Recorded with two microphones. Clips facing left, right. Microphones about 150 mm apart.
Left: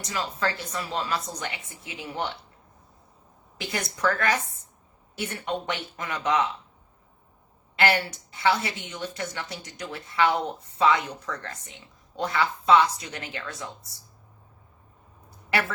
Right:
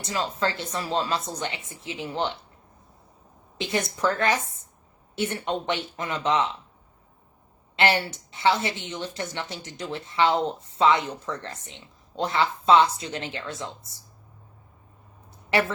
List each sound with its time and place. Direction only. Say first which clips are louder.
0.0 s a woman's voice: right 2 dB; 25° right (ahead or behind)
3.6 s a woman's voice: right 2 dB; 25° right (ahead or behind)
7.8 s a woman's voice: right 1 dB; 25° right (ahead or behind)